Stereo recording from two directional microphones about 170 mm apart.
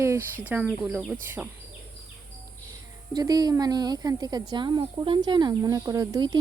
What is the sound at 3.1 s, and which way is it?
Speech, 25° right (ahead or behind).